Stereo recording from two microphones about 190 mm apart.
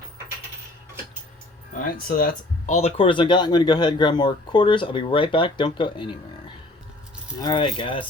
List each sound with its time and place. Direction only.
1.7 s speech: 50° left (ahead or behind)
2.7 s speech: 30° left (ahead or behind)
7.3 s speech: 20° left (ahead or behind)